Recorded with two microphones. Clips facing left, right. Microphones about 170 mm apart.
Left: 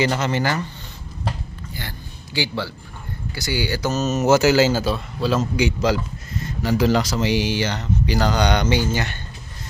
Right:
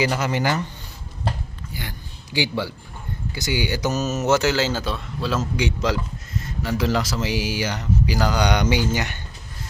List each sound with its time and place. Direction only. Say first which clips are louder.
0.0 s speech: left 1 dB; 10° right (ahead or behind)
1.7 s a sound: right 1 dB; 15° right (ahead or behind)
3.3 s speech: even; 20° right (ahead or behind)